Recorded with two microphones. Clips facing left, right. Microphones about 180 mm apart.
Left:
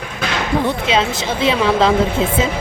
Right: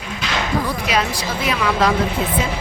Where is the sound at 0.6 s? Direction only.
25° left (ahead or behind).